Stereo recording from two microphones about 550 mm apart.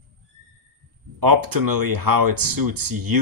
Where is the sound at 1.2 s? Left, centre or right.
Right.